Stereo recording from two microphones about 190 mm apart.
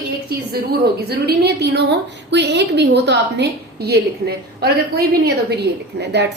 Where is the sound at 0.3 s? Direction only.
55° right (ahead or behind).